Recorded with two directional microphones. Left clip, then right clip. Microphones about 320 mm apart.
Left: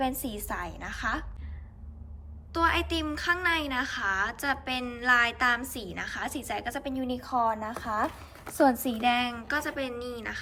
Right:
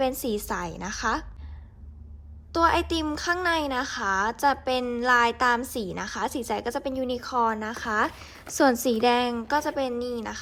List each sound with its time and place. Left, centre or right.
0.0 s a woman's voice: centre
2.5 s a woman's voice: centre
9.0 s a woman's voice: centre